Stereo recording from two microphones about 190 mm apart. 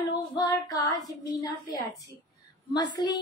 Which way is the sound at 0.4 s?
20° left (ahead or behind).